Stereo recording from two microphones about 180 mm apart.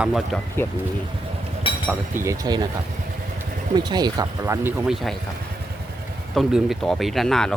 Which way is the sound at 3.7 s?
25° right (ahead or behind).